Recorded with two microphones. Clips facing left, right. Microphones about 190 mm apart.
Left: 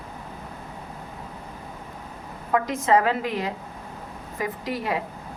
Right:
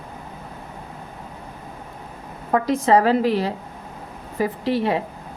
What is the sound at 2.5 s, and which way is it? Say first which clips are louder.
A woman's voice: right 4 dB; 35° right (ahead or behind).